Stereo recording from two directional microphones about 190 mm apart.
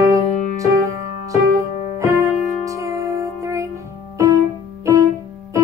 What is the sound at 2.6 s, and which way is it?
Music, 15° right (ahead or behind).